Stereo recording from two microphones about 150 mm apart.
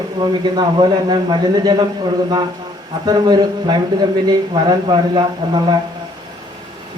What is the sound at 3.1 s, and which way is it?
A man's voice, 30° right (ahead or behind).